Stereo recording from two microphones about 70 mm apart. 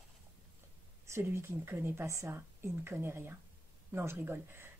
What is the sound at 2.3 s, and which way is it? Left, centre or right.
Speech, right.